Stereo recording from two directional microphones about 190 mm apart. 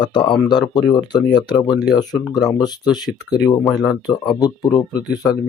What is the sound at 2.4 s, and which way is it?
Speech, 20° left (ahead or behind).